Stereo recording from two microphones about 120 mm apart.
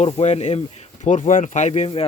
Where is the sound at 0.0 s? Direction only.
65° left (ahead or behind).